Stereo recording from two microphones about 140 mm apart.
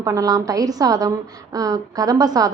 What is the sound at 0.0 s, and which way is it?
A woman's voice, 25° right (ahead or behind).